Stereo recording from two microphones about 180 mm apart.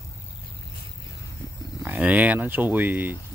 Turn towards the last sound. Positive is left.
turn(degrees=-10)  # may be behind; listen again after turning